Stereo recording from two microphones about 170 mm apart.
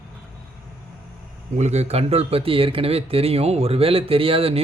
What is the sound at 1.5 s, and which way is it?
Speech, 40° right (ahead or behind).